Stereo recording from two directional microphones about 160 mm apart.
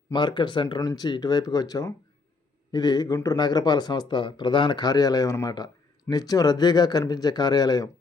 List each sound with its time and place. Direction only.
0.1 s speech: 30° left (ahead or behind)